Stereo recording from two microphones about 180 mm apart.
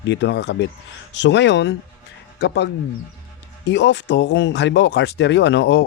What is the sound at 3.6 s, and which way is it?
Speech, 80° left.